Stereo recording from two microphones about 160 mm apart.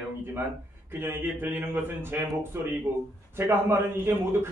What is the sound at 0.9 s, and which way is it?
A man's voice, 15° right (ahead or behind).